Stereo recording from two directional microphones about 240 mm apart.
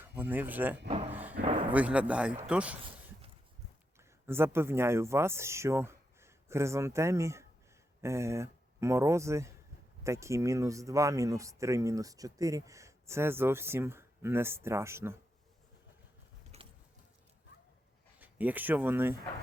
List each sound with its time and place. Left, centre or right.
0.0 s speech: centre
0.9 s speech: right
1.1 s speech: centre
1.4 s a sound: right
1.7 s speech: centre
4.3 s speech: centre
16.5 s gears: right
18.2 s speech: centre